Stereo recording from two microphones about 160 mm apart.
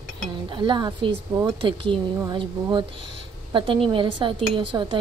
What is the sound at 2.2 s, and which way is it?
A woman's voice, 30° right (ahead or behind).